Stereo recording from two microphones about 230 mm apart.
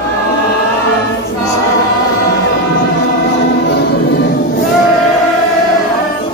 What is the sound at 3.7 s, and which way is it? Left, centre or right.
Music, left.